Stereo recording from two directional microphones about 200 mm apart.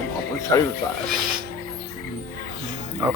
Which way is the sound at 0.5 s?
15° left (ahead or behind).